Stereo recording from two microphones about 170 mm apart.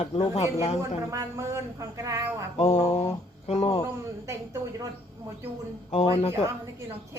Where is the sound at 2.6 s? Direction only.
35° left (ahead or behind).